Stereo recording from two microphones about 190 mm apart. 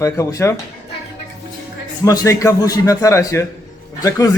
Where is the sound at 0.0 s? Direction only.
15° left (ahead or behind).